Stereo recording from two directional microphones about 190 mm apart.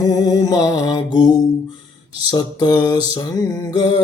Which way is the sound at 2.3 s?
20° left (ahead or behind).